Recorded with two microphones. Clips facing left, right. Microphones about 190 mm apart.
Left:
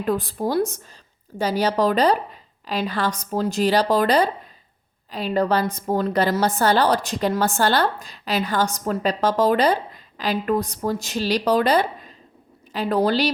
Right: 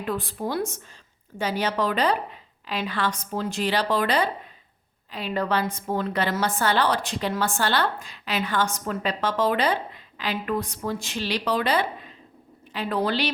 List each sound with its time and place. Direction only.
0.0 s a woman's voice: 40° left (ahead or behind)